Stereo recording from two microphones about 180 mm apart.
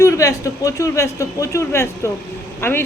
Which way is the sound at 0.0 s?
15° left (ahead or behind).